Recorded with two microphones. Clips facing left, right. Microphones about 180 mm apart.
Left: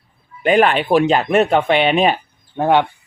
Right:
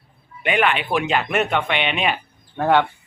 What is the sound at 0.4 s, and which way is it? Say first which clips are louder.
Speech: left 6 dB; 35° left (ahead or behind).